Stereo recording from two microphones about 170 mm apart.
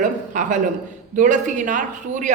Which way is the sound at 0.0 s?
50° right (ahead or behind).